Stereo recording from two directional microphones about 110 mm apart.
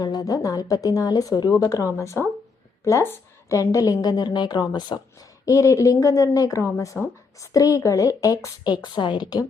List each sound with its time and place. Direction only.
0.0 s a woman's voice: 35° left (ahead or behind)
5.5 s a woman's voice: 30° left (ahead or behind)
8.8 s a woman's voice: 45° left (ahead or behind)